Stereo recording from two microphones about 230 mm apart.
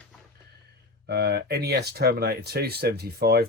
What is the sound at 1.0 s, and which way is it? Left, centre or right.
Speech, right.